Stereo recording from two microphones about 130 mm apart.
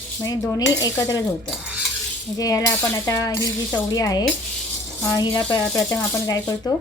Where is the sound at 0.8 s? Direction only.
25° left (ahead or behind).